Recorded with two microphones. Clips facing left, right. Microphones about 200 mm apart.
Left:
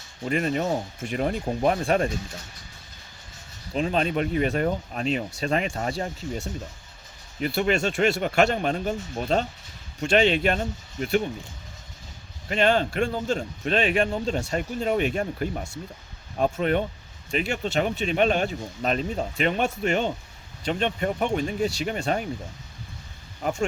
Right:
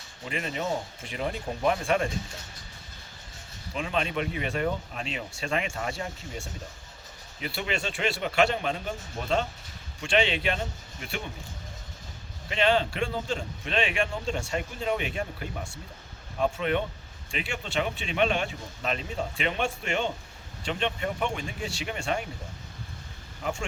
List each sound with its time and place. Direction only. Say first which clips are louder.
0.3 s a man's voice: left 6 dB; 45° left (ahead or behind)
3.8 s a man's voice: left 5 dB; 35° left (ahead or behind)
12.5 s a man's voice: left 3 dB; 45° left (ahead or behind)
23.4 s speech: left 6 dB; 40° left (ahead or behind)